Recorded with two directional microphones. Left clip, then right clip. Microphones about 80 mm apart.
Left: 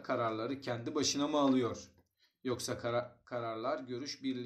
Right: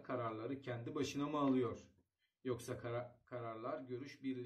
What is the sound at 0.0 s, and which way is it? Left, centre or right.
Speech, left.